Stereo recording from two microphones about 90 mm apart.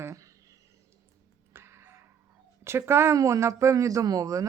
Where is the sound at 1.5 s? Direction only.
30° right (ahead or behind).